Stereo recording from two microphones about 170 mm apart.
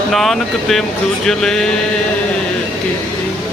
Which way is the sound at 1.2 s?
5° left (ahead or behind).